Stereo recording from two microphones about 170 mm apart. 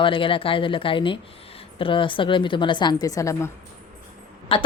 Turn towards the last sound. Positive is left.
turn(degrees=30)  # may be behind; listen again after turning